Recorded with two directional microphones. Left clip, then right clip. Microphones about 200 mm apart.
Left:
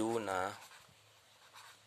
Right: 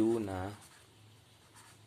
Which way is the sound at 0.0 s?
45° left (ahead or behind).